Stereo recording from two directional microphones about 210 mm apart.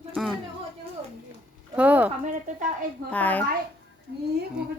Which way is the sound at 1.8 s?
5° right (ahead or behind).